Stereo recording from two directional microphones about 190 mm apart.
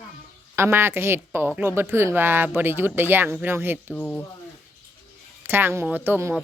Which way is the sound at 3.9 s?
5° left (ahead or behind).